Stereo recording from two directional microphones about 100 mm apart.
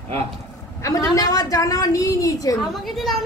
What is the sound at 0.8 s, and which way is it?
A woman's voice, 35° left (ahead or behind).